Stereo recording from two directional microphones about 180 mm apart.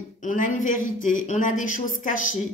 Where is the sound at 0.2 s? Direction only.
45° left (ahead or behind).